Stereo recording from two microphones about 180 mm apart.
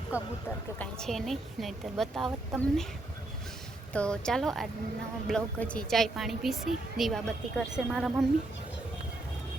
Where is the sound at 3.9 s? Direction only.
5° left (ahead or behind).